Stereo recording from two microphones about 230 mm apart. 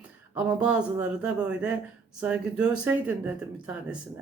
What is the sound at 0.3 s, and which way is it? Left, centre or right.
Speech, centre.